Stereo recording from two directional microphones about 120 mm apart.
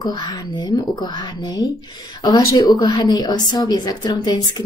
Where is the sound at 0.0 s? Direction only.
35° left (ahead or behind).